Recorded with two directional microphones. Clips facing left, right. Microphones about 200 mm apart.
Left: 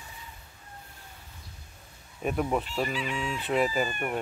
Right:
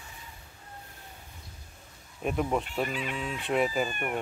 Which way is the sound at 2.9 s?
55° right (ahead or behind).